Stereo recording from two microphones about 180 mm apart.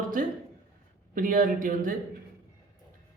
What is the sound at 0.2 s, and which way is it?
A man's voice, 50° right (ahead or behind).